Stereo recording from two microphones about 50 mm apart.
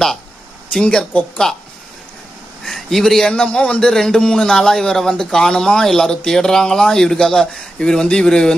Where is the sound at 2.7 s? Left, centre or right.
Centre.